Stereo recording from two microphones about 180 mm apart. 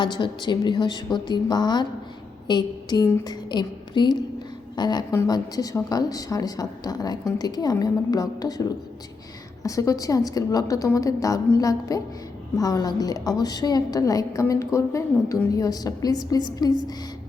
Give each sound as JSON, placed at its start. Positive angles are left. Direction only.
{"t": 0.0, "sound": "a woman's voice", "side_deg": 25}